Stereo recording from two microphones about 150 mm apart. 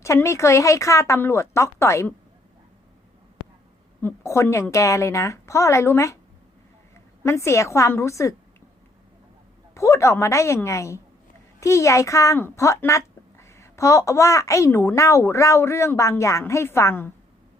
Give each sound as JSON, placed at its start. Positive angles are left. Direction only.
{"t": 0.0, "sound": "speech", "side_deg": 20}
{"t": 4.0, "sound": "speech", "side_deg": 20}
{"t": 7.3, "sound": "speech", "side_deg": 20}
{"t": 9.7, "sound": "speech", "side_deg": 20}